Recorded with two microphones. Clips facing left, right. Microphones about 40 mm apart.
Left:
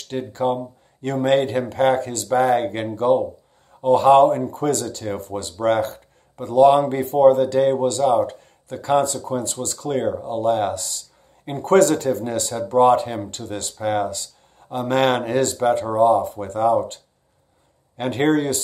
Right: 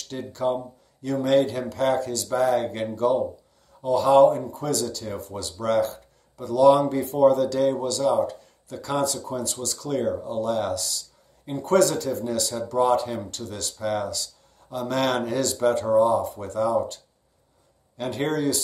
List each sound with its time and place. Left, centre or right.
0.1 s speech: left
15.5 s speech: centre; by 18.6 s left